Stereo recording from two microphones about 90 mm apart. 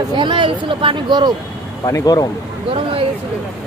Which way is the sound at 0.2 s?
65° right (ahead or behind).